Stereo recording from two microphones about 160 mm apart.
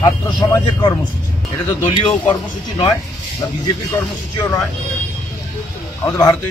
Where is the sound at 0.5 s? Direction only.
20° left (ahead or behind).